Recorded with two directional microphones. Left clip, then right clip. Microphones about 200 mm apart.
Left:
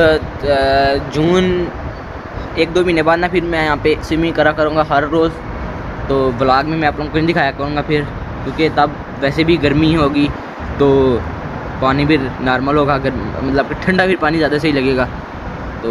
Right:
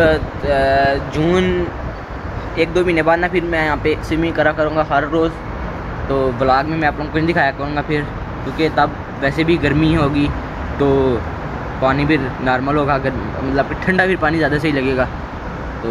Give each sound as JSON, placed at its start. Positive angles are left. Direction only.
{"t": 0.0, "sound": "speech", "side_deg": 15}